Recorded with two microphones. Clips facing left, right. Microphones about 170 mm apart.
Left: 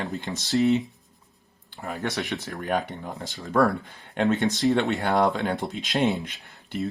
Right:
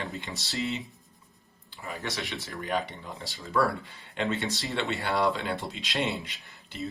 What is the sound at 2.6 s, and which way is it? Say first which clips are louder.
Speech: left 4 dB; 45° left (ahead or behind).